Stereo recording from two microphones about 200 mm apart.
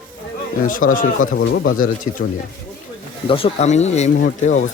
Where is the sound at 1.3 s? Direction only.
55° left (ahead or behind); by 1.8 s 70° left (ahead or behind).